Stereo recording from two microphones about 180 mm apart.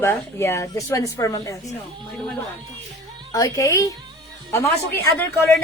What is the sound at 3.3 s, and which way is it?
A woman's voice, 20° left (ahead or behind).